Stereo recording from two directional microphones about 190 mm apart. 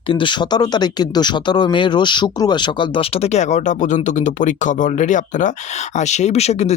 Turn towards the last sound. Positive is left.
turn(degrees=35)  # may be behind; listen again after turning